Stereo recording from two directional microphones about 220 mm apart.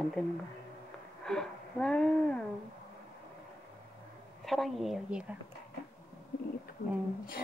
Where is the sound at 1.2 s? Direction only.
5° left (ahead or behind).